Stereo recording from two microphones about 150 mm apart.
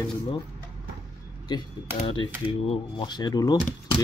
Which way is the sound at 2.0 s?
35° left (ahead or behind).